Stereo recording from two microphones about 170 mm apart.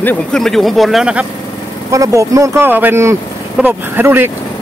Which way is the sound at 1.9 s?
20° right (ahead or behind).